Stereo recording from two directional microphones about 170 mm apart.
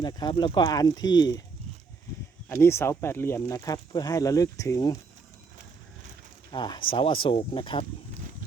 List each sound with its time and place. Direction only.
0.0 s speech: 25° left (ahead or behind)
2.5 s speech: 15° left (ahead or behind)
6.5 s speech: 25° left (ahead or behind)